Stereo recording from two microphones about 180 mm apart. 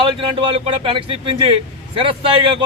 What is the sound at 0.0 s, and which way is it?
A man's voice, 30° right (ahead or behind).